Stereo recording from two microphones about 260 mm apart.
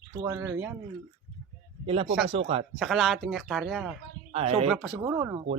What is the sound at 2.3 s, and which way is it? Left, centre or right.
Speech, right.